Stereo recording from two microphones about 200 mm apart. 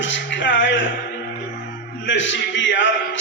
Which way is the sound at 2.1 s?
65° left (ahead or behind).